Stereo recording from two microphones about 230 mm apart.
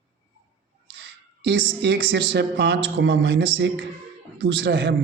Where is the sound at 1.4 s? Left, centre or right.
Right.